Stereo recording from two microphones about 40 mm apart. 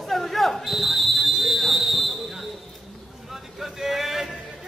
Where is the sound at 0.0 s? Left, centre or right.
Centre.